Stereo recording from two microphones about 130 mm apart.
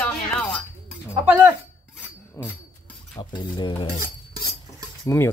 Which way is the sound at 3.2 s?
40° left (ahead or behind).